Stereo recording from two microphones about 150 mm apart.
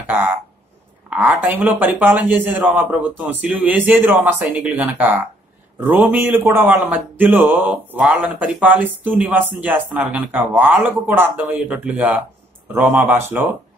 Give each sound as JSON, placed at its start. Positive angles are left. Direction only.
{"t": 1.1, "sound": "a man's voice", "side_deg": -10}